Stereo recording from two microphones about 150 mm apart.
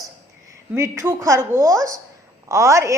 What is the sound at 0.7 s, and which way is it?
A woman's voice, 20° right (ahead or behind).